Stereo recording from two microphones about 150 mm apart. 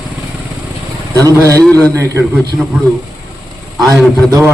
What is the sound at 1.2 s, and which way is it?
Speech, 20° right (ahead or behind).